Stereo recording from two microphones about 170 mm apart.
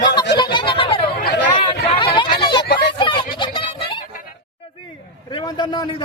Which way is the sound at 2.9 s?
30° left (ahead or behind).